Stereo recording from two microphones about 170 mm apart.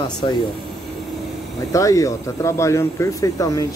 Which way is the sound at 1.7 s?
20° left (ahead or behind).